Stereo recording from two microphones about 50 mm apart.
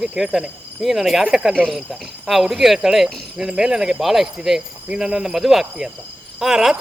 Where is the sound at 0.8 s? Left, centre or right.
Centre.